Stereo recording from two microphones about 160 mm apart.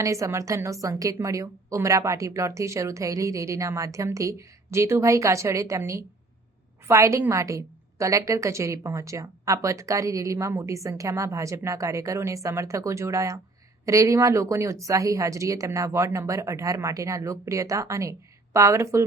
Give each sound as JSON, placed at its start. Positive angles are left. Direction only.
{"t": 0.0, "sound": "a woman's voice", "side_deg": -20}